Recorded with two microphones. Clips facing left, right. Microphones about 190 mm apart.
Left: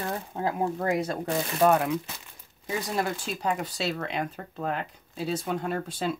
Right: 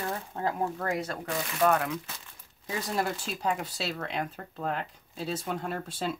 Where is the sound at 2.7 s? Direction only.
Centre (ahead or behind).